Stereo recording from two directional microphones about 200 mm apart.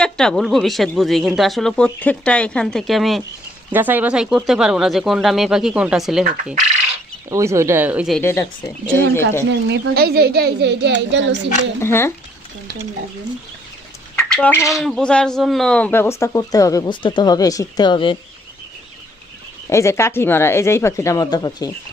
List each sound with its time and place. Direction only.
0.0 s speech: 5° left (ahead or behind)
7.3 s speech: 15° right (ahead or behind)
8.2 s speech: 15° left (ahead or behind)
9.5 s a woman's voice: 60° right (ahead or behind)
11.8 s speech: 10° left (ahead or behind)
14.2 s speech: 5° left (ahead or behind)
14.8 s speech: centre (ahead or behind); by 18.2 s 25° left (ahead or behind)
19.7 s speech: 15° left (ahead or behind)